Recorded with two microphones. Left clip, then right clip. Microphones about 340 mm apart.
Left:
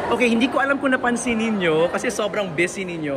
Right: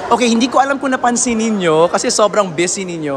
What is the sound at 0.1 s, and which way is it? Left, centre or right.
Speech, centre.